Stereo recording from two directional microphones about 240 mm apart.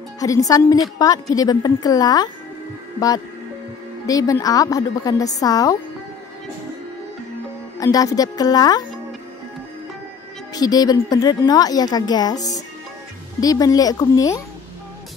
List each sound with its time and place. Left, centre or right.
0.2 s a woman's voice: centre
4.0 s a woman's voice: centre
7.8 s a woman's voice: centre
10.5 s a woman's voice: centre